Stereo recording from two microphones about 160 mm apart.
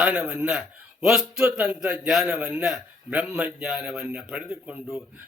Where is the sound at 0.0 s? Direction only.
5° right (ahead or behind).